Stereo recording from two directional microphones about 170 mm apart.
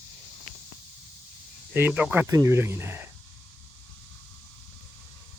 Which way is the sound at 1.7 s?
10° right (ahead or behind).